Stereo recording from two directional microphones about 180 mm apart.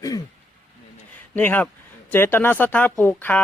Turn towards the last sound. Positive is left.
turn(degrees=10)  # may be behind; listen again after turning